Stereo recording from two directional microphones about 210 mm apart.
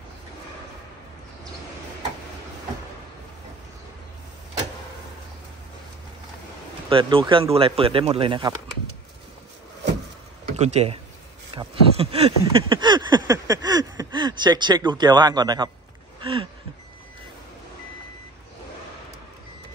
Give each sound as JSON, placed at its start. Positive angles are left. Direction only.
{"t": 6.9, "sound": "speech", "side_deg": -25}
{"t": 10.6, "sound": "speech", "side_deg": -30}
{"t": 16.2, "sound": "a sound", "side_deg": -25}